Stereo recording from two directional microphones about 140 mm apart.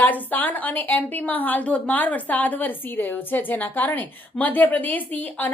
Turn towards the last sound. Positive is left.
turn(degrees=10)  # may be behind; listen again after turning